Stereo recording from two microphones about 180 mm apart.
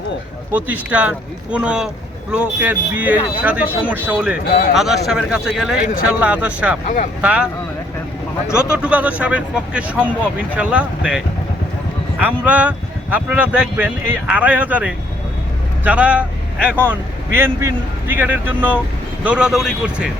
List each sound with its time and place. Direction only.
0.5 s a man's voice: 10° right (ahead or behind)
6.8 s speech: 45° left (ahead or behind)
7.2 s a man's voice: 5° right (ahead or behind)
8.7 s a man's voice: 5° right (ahead or behind)